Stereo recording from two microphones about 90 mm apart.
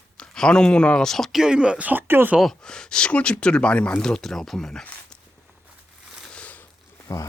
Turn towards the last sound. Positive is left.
turn(degrees=35)  # may be behind; listen again after turning